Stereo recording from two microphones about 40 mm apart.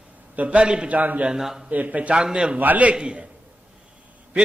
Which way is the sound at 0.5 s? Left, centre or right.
Right.